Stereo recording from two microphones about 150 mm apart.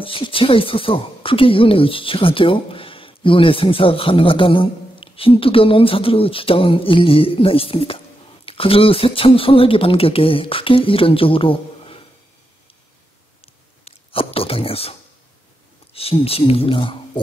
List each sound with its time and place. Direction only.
0.0 s speech: 35° left (ahead or behind)
13.8 s a sound: 40° left (ahead or behind)
15.9 s speech: 40° left (ahead or behind)